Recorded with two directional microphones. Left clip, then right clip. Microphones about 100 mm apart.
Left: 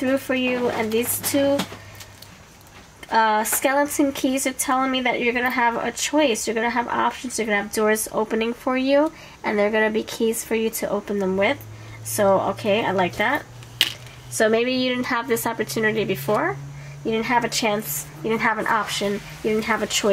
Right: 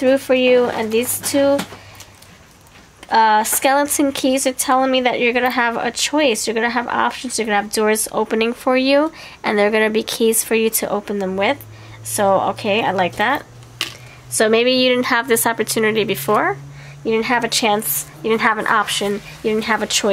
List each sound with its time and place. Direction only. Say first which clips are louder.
0.0 s speech: right 8 dB; 50° right (ahead or behind)
3.1 s speech: right 5 dB; 40° right (ahead or behind)
7.7 s speech: right 3 dB; 40° right (ahead or behind)
8.4 s speech: right 6 dB; 55° right (ahead or behind)
13.8 s a sound: left 4 dB; 10° left (ahead or behind)
14.4 s speech: right 6 dB; 50° right (ahead or behind)
16.3 s speech: right 5 dB; 65° right (ahead or behind)
17.1 s speech: right 4 dB; 45° right (ahead or behind)
17.6 s speech: right 6 dB; 55° right (ahead or behind)
19.0 s speech: right 3 dB; 60° right (ahead or behind)
19.6 s speech: right 4 dB; 45° right (ahead or behind)